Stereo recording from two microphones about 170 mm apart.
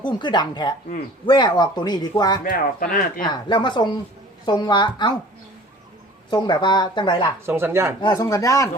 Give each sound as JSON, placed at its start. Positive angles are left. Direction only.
{"t": 0.0, "sound": "speech", "side_deg": 25}
{"t": 2.4, "sound": "speech", "side_deg": 55}
{"t": 3.2, "sound": "speech", "side_deg": 25}
{"t": 6.3, "sound": "speech", "side_deg": 25}
{"t": 7.4, "sound": "speech", "side_deg": -15}
{"t": 8.1, "sound": "speech", "side_deg": 20}